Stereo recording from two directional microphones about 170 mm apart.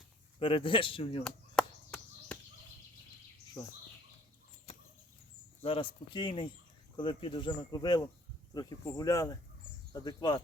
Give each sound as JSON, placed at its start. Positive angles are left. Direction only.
{"t": 0.3, "sound": "speech", "side_deg": 30}
{"t": 1.2, "sound": "chop", "side_deg": 5}
{"t": 3.6, "sound": "speech", "side_deg": 20}
{"t": 5.6, "sound": "speech", "side_deg": 30}